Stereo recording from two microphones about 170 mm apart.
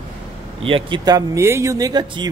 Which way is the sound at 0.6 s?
30° right (ahead or behind).